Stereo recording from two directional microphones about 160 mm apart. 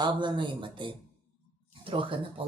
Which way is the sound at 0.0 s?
30° right (ahead or behind).